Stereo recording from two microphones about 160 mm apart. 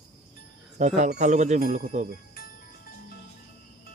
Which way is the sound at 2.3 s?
65° left (ahead or behind).